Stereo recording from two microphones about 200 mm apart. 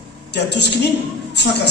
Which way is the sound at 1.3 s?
60° left (ahead or behind).